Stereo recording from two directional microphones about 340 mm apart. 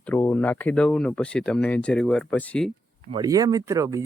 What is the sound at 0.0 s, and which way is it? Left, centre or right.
Speech, centre.